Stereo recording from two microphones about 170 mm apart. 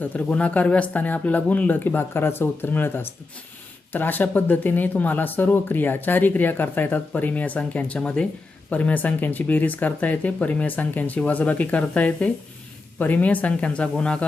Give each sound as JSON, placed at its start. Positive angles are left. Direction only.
{"t": 0.0, "sound": "speech", "side_deg": 10}